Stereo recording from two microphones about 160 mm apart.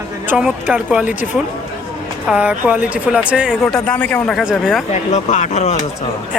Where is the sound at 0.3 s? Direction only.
5° right (ahead or behind).